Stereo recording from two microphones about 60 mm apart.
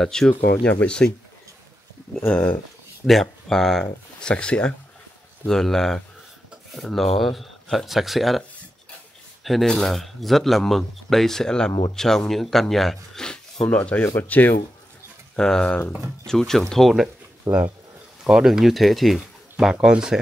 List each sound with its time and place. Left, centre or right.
0.0 s speech: centre
0.3 s speech: left
2.1 s speech: left
3.1 s speech: centre
4.2 s speech: centre
5.5 s speech: centre
13.7 s speech: left
15.3 s speech: centre
17.4 s speech: right
18.2 s speech: centre
19.1 s speech: centre